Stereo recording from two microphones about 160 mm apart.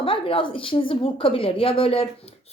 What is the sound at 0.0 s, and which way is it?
A woman's voice, 35° left (ahead or behind).